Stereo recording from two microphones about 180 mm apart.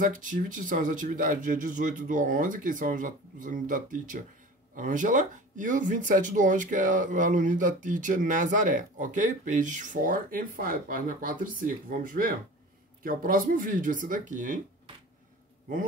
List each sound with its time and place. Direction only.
0.0 s speech: 50° right (ahead or behind)